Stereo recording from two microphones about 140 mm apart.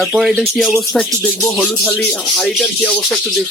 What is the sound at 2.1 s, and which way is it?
Speech, 5° left (ahead or behind).